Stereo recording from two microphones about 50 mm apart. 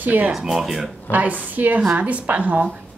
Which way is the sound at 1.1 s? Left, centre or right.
Right.